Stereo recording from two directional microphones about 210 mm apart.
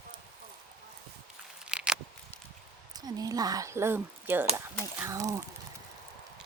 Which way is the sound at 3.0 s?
20° right (ahead or behind).